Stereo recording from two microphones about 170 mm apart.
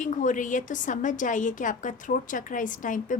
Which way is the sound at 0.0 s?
50° left (ahead or behind).